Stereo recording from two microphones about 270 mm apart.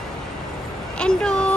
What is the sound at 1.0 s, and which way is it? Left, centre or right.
Speech, centre.